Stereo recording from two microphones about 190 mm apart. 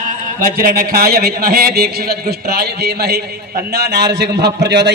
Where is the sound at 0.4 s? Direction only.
50° right (ahead or behind).